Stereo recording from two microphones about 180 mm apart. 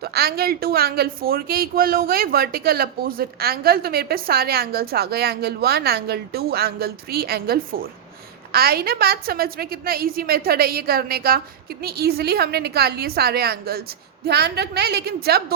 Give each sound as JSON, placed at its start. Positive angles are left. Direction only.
{"t": 0.0, "sound": "speech", "side_deg": -60}